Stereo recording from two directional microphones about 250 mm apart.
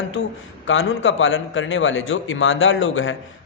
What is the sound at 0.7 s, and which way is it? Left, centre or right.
A man's voice, left.